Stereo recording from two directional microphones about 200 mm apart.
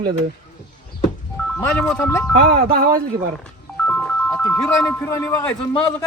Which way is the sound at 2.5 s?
45° right (ahead or behind).